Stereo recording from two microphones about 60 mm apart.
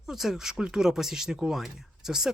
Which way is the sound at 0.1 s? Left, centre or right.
Centre.